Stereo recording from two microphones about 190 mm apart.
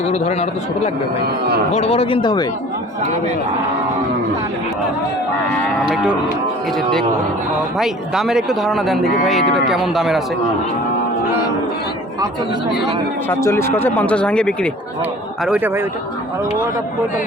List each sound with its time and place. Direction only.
0.1 s a man's voice: 35° left (ahead or behind)
1.7 s speech: 30° left (ahead or behind)
5.9 s speech: 5° right (ahead or behind)
7.8 s speech: centre (ahead or behind)
13.2 s speech: 15° left (ahead or behind)
15.4 s a man's voice: 10° right (ahead or behind)